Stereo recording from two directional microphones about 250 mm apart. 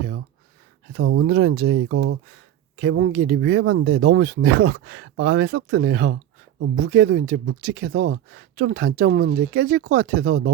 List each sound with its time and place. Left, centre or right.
0.9 s speech: right
2.7 s speech: right